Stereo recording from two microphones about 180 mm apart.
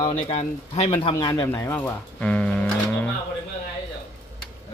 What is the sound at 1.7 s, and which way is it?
Livestock, 10° left (ahead or behind).